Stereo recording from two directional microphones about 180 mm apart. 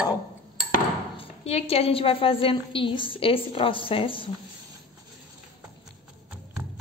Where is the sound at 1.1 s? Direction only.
35° left (ahead or behind).